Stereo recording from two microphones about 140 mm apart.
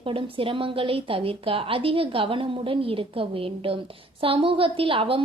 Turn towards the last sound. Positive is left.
turn(degrees=-40)  # may be behind; listen again after turning